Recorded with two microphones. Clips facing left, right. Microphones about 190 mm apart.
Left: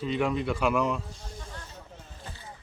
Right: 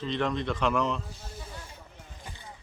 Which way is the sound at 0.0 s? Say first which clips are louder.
Left 2 dB; 10° left (ahead or behind).